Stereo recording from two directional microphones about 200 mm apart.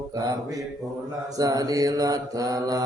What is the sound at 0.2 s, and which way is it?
Mantra, 20° right (ahead or behind).